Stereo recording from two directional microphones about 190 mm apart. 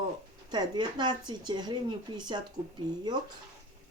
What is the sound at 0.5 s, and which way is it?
Speech, 20° right (ahead or behind).